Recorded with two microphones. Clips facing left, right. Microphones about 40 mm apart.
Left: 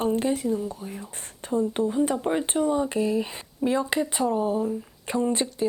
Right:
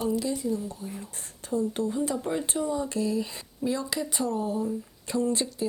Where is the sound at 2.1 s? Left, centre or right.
Left.